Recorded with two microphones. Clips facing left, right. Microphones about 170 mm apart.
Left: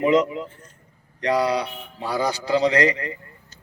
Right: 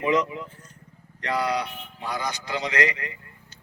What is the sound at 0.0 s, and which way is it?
A man's voice, 30° left (ahead or behind).